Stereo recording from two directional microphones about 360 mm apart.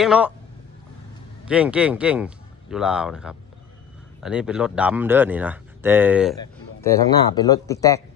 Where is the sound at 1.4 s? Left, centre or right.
Centre.